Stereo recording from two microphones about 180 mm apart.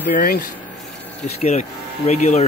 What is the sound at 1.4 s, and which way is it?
Speech, 40° left (ahead or behind).